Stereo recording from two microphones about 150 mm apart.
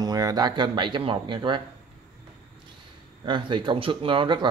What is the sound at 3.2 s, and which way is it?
Speech, 35° right (ahead or behind).